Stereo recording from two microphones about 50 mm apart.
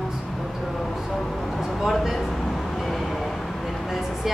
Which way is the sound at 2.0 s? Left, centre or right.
Centre.